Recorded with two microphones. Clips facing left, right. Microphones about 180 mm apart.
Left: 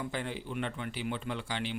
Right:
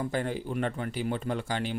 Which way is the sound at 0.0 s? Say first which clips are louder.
Right 6 dB; 45° right (ahead or behind).